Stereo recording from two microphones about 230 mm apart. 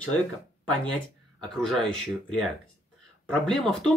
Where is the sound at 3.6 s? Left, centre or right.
Centre.